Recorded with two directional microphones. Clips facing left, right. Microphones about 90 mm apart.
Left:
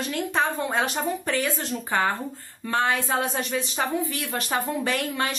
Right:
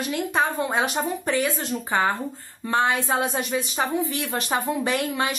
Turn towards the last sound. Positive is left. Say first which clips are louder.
# right 2 dB
turn(degrees=-15)  # may be behind; listen again after turning